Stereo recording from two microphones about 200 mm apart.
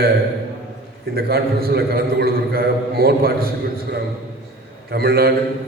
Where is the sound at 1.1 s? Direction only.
50° right (ahead or behind).